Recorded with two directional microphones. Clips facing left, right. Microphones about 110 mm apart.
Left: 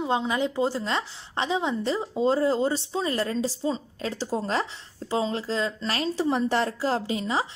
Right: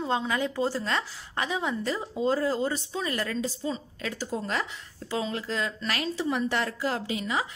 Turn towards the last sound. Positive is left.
turn(degrees=30)  # may be behind; listen again after turning